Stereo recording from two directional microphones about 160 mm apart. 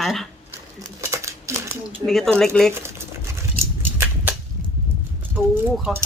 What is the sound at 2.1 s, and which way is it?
Speech, 5° left (ahead or behind).